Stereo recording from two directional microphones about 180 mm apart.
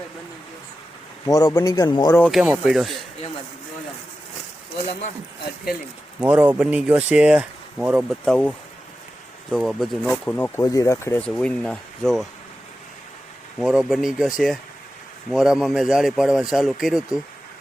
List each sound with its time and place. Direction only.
1.3 s speech: 20° left (ahead or behind)
2.1 s speech: 10° left (ahead or behind)
2.4 s speech: centre (ahead or behind)
6.1 s speech: 10° right (ahead or behind); by 11.2 s 15° left (ahead or behind)
11.3 s speech: 5° left (ahead or behind)
13.6 s speech: centre (ahead or behind)